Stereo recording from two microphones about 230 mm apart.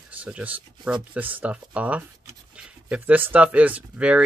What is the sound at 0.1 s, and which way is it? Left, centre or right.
Speech, centre.